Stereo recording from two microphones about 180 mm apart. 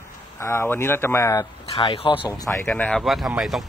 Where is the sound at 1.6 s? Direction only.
30° left (ahead or behind).